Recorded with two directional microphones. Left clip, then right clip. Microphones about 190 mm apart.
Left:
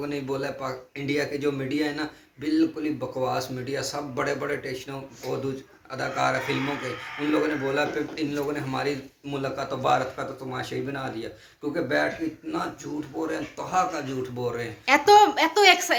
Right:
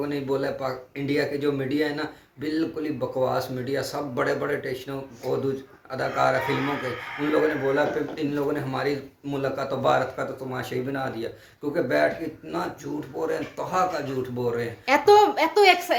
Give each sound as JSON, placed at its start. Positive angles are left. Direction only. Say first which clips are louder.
{"t": 0.0, "sound": "speech", "louder": "right 3 dB", "side_deg": -15}
{"t": 5.2, "sound": "speech", "louder": "right 4 dB", "side_deg": -10}
{"t": 7.4, "sound": "a man's voice", "louder": "right 3 dB", "side_deg": -20}
{"t": 14.8, "sound": "a woman's voice", "louder": "left 1 dB", "side_deg": -5}